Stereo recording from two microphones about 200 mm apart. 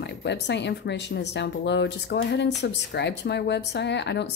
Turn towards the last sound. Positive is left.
turn(degrees=60)  # may be behind; listen again after turning